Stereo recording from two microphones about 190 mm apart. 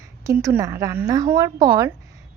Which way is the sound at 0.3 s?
15° right (ahead or behind).